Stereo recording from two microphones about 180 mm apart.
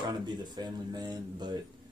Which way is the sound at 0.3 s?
25° right (ahead or behind).